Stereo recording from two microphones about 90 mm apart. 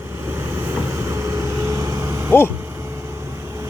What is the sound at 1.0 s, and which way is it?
Vehicle, 30° right (ahead or behind).